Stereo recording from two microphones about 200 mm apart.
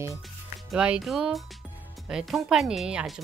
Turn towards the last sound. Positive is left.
turn(degrees=-5)  # may be behind; listen again after turning